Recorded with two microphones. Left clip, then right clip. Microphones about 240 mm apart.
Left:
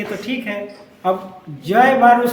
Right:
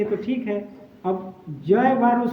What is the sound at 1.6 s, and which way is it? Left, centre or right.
Speech, centre.